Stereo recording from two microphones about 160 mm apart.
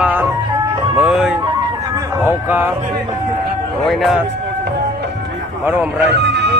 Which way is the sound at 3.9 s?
Centre (ahead or behind).